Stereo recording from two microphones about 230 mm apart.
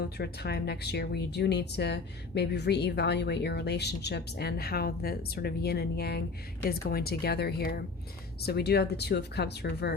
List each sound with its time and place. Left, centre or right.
0.2 s speech: left